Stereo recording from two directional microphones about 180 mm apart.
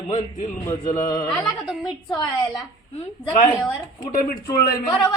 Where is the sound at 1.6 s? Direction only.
Centre (ahead or behind).